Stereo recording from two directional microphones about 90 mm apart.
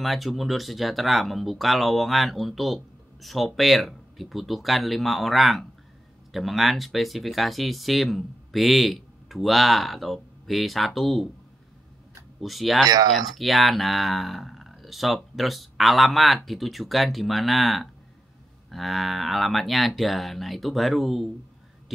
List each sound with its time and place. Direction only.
0.0 s speech: centre (ahead or behind)
12.4 s speech: centre (ahead or behind)
12.8 s speech: 45° right (ahead or behind)
13.1 s speech: centre (ahead or behind)